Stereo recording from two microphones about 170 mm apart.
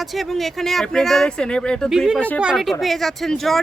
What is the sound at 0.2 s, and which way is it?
Speech, centre (ahead or behind).